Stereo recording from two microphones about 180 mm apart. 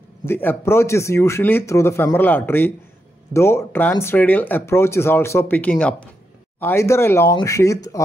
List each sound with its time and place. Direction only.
0.2 s speech: 10° left (ahead or behind)